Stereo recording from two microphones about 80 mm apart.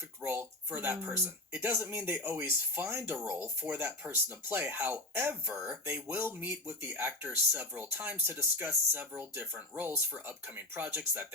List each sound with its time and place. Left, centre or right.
0.2 s speech: right